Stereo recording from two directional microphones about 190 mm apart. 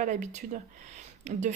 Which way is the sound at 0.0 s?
40° right (ahead or behind).